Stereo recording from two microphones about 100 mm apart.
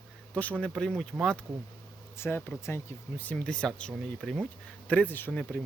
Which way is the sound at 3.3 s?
10° left (ahead or behind).